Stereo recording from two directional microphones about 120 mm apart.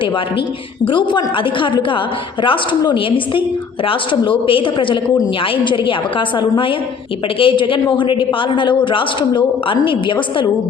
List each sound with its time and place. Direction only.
0.9 s a man's voice: 45° left (ahead or behind)